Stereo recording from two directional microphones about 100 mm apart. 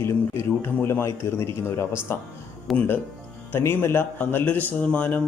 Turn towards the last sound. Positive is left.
turn(degrees=15)  # may be behind; listen again after turning